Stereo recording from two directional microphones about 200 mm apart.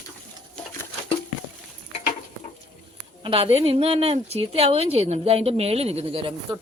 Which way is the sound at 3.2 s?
30° right (ahead or behind).